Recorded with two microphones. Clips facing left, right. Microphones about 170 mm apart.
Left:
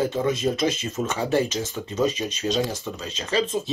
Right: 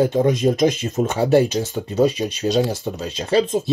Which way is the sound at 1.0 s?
35° right (ahead or behind).